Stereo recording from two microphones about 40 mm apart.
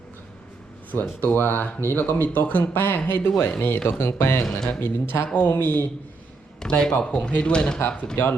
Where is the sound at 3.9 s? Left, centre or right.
Left.